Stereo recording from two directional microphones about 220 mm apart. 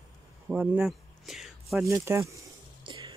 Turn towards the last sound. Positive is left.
turn(degrees=-20)  # may be behind; listen again after turning